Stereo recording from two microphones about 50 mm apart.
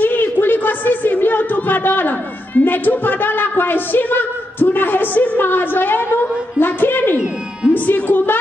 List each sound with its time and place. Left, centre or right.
0.0 s a sound: left
1.2 s a man's voice: left
7.7 s music: left